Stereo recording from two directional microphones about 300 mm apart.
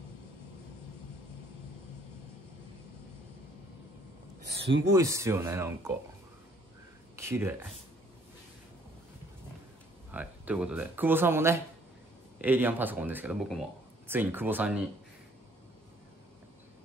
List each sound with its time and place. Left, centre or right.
4.6 s a sound: right
4.8 s speech: centre
7.2 s speech: centre
10.1 s speech: centre